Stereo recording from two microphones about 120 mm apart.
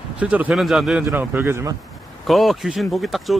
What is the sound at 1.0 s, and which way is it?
Speech, 20° right (ahead or behind).